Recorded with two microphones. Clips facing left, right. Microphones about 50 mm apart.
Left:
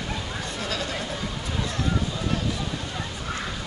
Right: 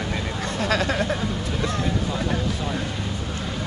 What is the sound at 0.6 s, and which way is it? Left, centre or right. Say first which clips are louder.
Vehicle: right 9 dB; right.